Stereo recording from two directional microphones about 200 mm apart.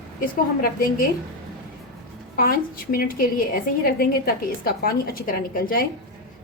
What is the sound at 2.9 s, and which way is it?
A woman's voice, 45° left (ahead or behind).